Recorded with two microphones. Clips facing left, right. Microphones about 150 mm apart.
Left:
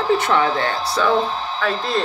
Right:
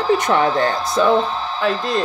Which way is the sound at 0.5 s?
40° right (ahead or behind).